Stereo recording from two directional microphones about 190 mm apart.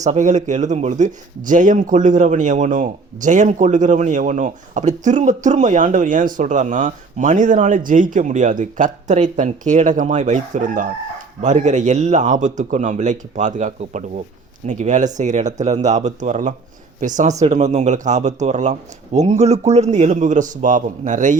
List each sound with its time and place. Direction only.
0.0 s speech: 40° right (ahead or behind)